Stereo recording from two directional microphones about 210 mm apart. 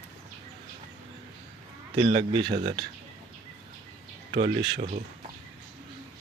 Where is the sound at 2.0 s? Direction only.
25° right (ahead or behind).